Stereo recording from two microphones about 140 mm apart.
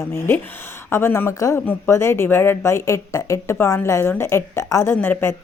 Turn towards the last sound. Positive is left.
turn(degrees=15)  # may be behind; listen again after turning